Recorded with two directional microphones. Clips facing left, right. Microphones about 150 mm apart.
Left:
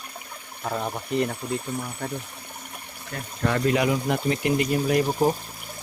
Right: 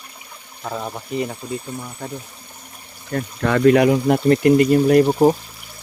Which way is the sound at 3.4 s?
90° right.